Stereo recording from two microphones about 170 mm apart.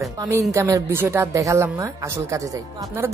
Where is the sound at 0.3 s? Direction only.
15° right (ahead or behind).